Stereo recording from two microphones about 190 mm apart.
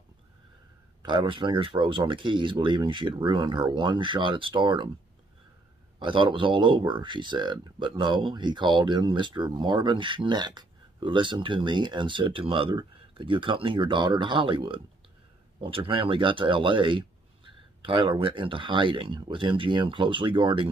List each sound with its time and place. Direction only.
1.0 s speech: 25° right (ahead or behind)
5.9 s speech: 25° right (ahead or behind)